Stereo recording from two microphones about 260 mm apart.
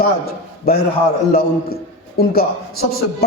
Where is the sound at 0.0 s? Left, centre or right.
Left.